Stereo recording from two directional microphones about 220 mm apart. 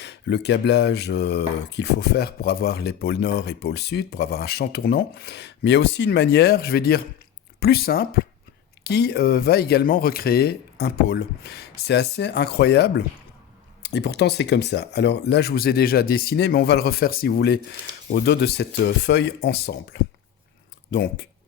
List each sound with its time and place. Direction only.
0.0 s speech: 50° left (ahead or behind)